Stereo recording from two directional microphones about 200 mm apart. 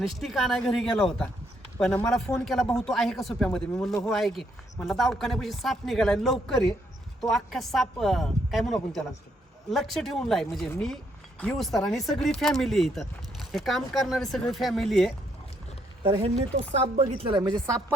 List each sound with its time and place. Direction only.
0.0 s speech: centre (ahead or behind)
16.0 s speech: 30° right (ahead or behind)